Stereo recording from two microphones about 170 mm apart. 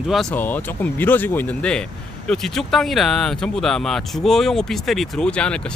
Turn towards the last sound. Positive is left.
turn(degrees=5)  # may be behind; listen again after turning